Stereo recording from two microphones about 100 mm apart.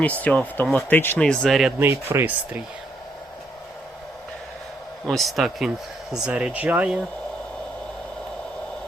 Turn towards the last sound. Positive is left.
turn(degrees=-15)  # may be behind; listen again after turning